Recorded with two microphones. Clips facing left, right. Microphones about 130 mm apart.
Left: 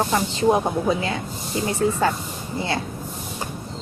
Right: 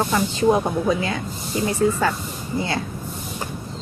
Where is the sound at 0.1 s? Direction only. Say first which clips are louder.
Right 1 dB; 25° left (ahead or behind).